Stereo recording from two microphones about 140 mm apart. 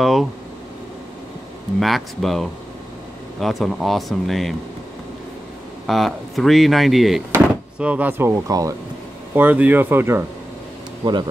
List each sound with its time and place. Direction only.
0.0 s a sound: centre (ahead or behind)
1.8 s speech: centre (ahead or behind)
5.9 s speech: centre (ahead or behind); by 8.7 s 25° right (ahead or behind)
9.3 s speech: 15° right (ahead or behind)